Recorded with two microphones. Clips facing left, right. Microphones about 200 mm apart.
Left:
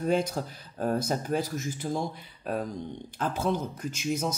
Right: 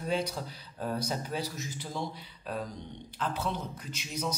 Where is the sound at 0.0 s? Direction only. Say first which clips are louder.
Left 5 dB; 50° left (ahead or behind).